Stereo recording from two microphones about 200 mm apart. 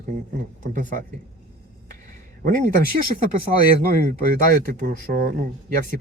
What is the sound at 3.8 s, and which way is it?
Speech, 45° right (ahead or behind).